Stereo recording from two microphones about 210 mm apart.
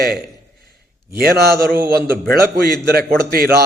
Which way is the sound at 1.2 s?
45° right (ahead or behind).